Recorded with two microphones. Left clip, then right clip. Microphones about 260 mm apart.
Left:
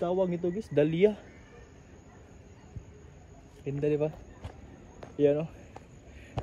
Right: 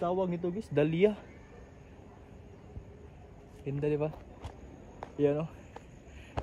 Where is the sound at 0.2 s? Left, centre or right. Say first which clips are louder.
Left 4 dB; centre.